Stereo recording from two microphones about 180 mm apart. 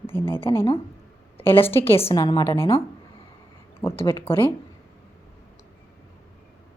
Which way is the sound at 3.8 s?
15° left (ahead or behind).